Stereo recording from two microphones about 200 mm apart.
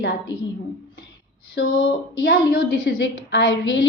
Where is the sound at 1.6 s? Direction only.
65° left (ahead or behind).